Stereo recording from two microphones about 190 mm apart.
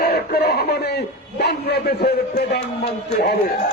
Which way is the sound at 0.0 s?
55° left (ahead or behind).